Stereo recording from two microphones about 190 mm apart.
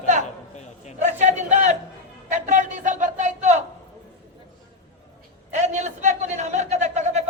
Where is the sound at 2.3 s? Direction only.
40° right (ahead or behind).